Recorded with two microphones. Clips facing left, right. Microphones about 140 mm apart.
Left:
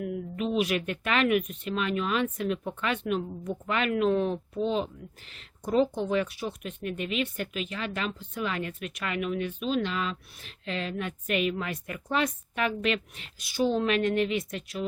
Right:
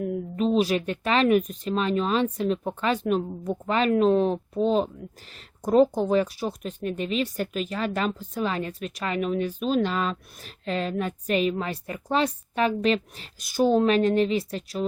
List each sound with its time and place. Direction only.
0.0 s speech: 35° right (ahead or behind)